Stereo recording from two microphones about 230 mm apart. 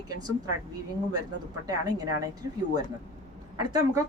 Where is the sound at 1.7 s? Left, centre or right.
Centre.